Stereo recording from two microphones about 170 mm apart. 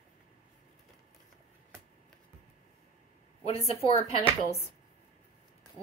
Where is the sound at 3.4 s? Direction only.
35° left (ahead or behind).